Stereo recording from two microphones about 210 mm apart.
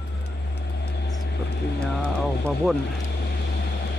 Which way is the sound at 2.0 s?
5° left (ahead or behind).